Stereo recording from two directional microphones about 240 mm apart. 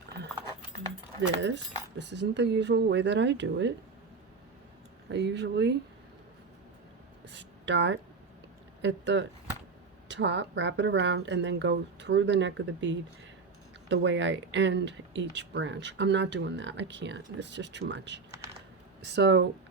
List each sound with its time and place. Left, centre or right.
1.4 s speech: right
5.0 s speech: right
7.3 s a sound: right
8.8 s speech: right